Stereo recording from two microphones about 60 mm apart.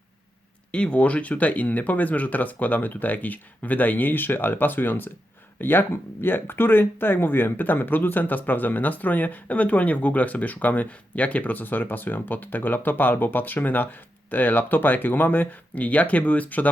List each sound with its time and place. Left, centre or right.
0.7 s speech: centre